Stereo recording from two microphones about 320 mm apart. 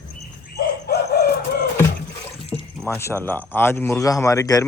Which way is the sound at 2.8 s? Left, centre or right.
Centre.